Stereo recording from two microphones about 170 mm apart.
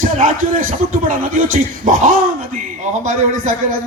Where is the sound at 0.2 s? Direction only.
50° right (ahead or behind).